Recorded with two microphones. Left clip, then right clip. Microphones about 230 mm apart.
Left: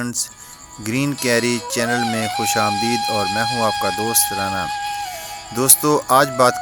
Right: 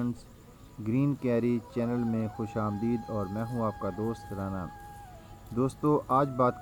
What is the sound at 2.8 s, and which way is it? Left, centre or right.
Speech, left.